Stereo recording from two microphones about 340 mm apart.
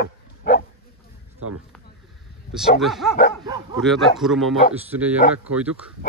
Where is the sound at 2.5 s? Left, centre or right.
Centre.